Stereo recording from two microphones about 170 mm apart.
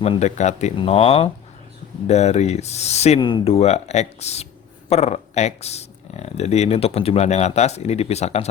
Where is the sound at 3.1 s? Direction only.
25° left (ahead or behind).